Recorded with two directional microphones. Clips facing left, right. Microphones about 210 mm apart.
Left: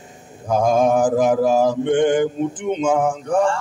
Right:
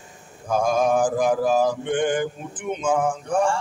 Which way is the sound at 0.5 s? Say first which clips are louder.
Left 4 dB; 20° left (ahead or behind).